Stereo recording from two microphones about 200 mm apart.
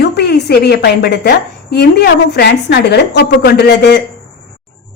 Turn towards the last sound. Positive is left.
turn(degrees=55)  # may be behind; listen again after turning